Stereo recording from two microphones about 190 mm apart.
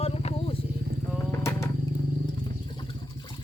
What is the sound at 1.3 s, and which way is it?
Wild animals, 15° left (ahead or behind).